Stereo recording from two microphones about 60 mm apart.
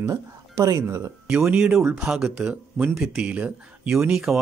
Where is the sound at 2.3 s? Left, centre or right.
Right.